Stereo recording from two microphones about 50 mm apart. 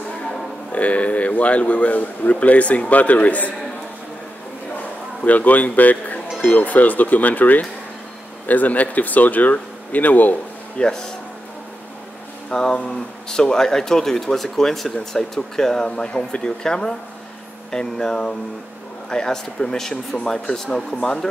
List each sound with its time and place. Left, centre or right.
0.7 s speech: left
5.2 s a man's voice: left
10.8 s speech: centre
12.4 s speech: centre